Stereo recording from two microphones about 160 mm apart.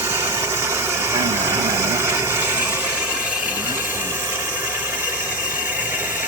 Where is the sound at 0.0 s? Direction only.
15° right (ahead or behind).